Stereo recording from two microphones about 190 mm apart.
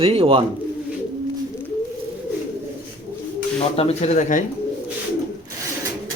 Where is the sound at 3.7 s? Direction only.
30° left (ahead or behind).